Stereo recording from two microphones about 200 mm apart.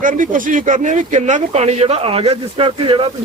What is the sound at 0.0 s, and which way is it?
Speech, 40° right (ahead or behind).